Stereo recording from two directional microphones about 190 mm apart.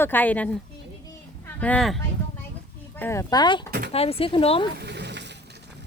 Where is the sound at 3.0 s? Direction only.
15° left (ahead or behind).